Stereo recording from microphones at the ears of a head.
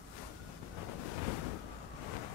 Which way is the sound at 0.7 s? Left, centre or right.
Left.